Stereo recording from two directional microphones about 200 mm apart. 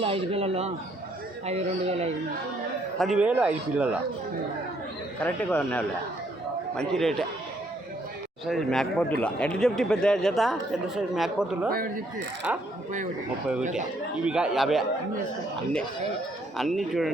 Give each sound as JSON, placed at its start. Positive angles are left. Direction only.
{"t": 0.0, "sound": "speech", "side_deg": -30}
{"t": 3.0, "sound": "speech", "side_deg": -5}
{"t": 5.2, "sound": "speech", "side_deg": 5}
{"t": 8.4, "sound": "speech", "side_deg": 0}
{"t": 11.7, "sound": "speech", "side_deg": -45}
{"t": 12.5, "sound": "speech", "side_deg": -10}
{"t": 13.6, "sound": "speech", "side_deg": -40}
{"t": 14.2, "sound": "speech", "side_deg": -5}
{"t": 16.6, "sound": "speech", "side_deg": 0}